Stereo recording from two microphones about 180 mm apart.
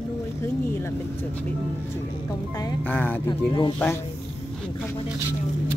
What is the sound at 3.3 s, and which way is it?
Speech, 25° left (ahead or behind).